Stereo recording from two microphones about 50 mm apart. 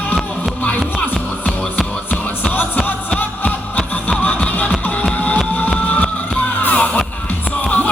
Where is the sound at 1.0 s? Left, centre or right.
Left.